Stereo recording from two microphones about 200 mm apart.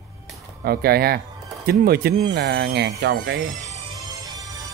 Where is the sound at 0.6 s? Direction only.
50° right (ahead or behind).